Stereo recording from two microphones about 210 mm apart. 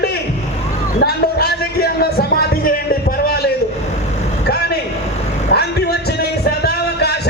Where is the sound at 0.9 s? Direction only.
50° left (ahead or behind).